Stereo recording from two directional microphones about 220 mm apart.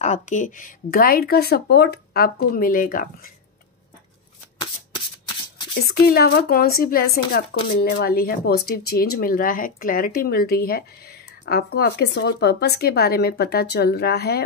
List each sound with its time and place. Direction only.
0.0 s speech: 35° left (ahead or behind)
5.9 s speech: 45° left (ahead or behind)